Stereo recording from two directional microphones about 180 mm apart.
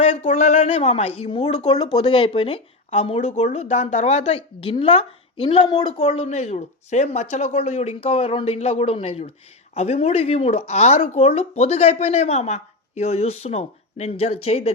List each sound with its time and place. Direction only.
0.2 s speech: 40° left (ahead or behind)